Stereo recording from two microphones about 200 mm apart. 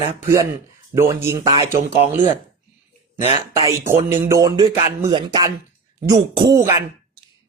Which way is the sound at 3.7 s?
15° right (ahead or behind).